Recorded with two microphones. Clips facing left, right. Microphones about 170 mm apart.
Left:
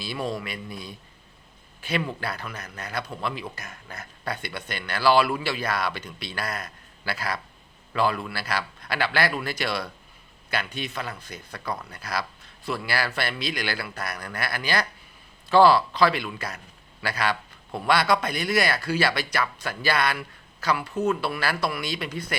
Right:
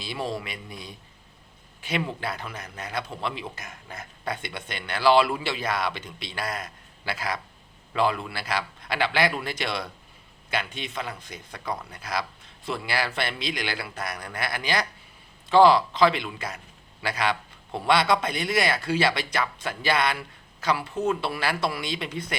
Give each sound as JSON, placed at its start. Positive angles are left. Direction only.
{"t": 0.0, "sound": "speech", "side_deg": -20}